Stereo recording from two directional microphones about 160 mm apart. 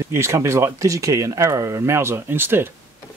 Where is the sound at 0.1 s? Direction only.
15° right (ahead or behind).